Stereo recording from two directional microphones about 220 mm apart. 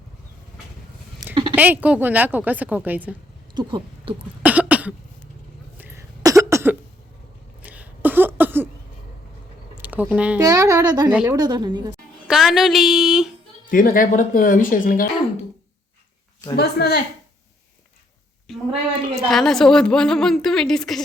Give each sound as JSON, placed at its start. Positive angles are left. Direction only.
{"t": 1.2, "sound": "a sound", "side_deg": -15}
{"t": 1.5, "sound": "speech", "side_deg": -10}
{"t": 3.5, "sound": "speech", "side_deg": -20}
{"t": 4.4, "sound": "cough", "side_deg": -5}
{"t": 7.6, "sound": "a sound", "side_deg": -5}
{"t": 9.7, "sound": "a sound", "side_deg": -5}
{"t": 10.2, "sound": "a woman's voice", "side_deg": -5}
{"t": 11.1, "sound": "speech", "side_deg": -5}
{"t": 11.3, "sound": "a woman's voice", "side_deg": -20}
{"t": 12.3, "sound": "a woman's voice", "side_deg": 0}
{"t": 13.7, "sound": "speech", "side_deg": 40}
{"t": 16.6, "sound": "speech", "side_deg": 45}
{"t": 18.5, "sound": "a woman's voice", "side_deg": 0}